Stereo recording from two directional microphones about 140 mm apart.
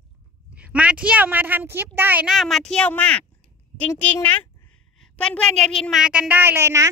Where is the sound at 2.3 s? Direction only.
Centre (ahead or behind).